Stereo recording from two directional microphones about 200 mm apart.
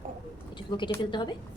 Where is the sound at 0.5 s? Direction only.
25° left (ahead or behind).